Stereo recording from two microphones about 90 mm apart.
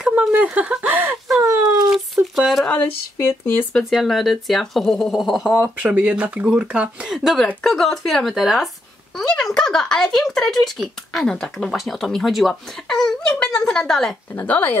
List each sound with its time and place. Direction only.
0.2 s speech: 15° right (ahead or behind)
2.3 s speech: centre (ahead or behind)
2.6 s speech: 15° left (ahead or behind)
3.2 s a woman's voice: 25° left (ahead or behind)
3.7 s speech: 5° left (ahead or behind)
14.3 s a woman's voice: 20° left (ahead or behind)